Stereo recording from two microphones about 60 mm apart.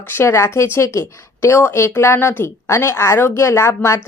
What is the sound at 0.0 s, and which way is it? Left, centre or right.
Speech, left.